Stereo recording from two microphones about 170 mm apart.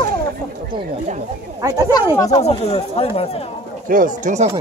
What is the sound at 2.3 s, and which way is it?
Speech, 35° left (ahead or behind).